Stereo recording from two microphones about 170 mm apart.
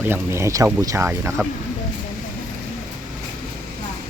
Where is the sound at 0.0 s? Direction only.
15° right (ahead or behind).